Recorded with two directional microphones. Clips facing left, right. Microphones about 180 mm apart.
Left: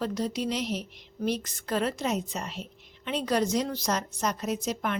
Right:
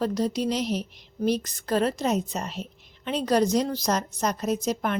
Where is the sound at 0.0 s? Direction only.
40° right (ahead or behind).